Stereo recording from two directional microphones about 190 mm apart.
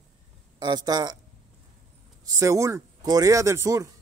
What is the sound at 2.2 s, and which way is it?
Speech, 15° right (ahead or behind).